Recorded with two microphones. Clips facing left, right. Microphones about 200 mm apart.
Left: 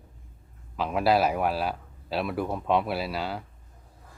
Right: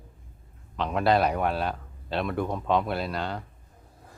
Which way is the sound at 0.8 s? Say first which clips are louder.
Even; 5° left (ahead or behind).